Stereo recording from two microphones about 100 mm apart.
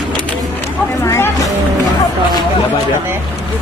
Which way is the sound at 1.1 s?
25° left (ahead or behind).